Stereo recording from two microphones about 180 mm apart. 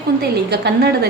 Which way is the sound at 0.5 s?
65° right (ahead or behind).